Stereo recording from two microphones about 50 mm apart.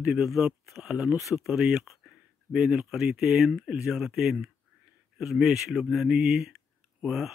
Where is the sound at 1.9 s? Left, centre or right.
Centre.